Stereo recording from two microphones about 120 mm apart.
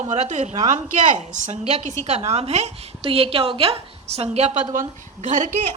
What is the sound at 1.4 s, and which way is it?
A woman's voice, 70° right (ahead or behind).